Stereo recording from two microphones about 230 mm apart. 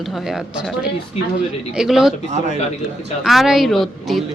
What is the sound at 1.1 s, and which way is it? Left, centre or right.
Speech, left.